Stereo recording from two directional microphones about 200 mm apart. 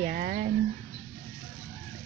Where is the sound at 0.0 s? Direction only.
40° right (ahead or behind).